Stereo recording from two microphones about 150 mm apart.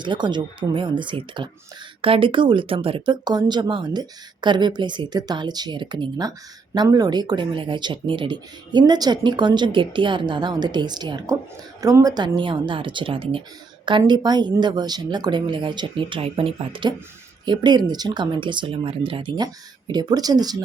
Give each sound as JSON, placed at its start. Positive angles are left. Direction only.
{"t": 0.0, "sound": "speech", "side_deg": -30}